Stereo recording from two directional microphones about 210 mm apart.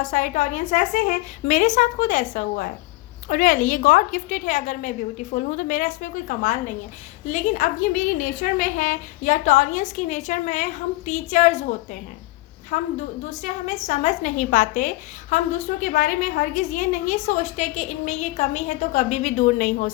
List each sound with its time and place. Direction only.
0.0 s a woman's voice: 35° left (ahead or behind)